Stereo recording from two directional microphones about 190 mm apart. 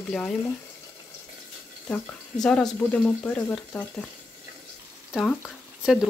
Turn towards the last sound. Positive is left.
turn(degrees=-5)  # may be behind; listen again after turning